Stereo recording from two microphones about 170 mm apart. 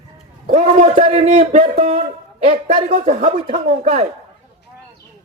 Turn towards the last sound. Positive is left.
turn(degrees=-40)  # may be behind; listen again after turning